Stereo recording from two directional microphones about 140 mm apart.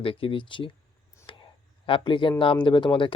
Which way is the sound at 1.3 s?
35° left (ahead or behind).